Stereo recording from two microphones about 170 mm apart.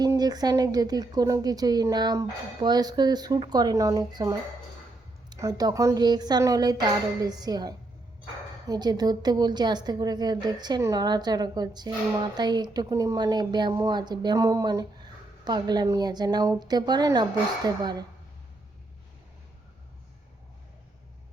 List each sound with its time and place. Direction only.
0.0 s a woman's voice: 25° right (ahead or behind)